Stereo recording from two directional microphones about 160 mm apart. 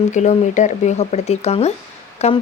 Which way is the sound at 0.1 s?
50° left (ahead or behind).